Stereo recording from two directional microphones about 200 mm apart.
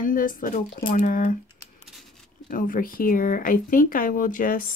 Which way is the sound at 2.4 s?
45° left (ahead or behind).